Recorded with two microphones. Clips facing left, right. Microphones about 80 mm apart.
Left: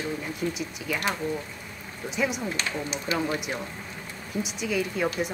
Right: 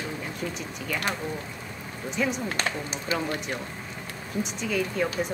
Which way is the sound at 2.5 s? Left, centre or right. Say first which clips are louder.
Right 1 dB; right.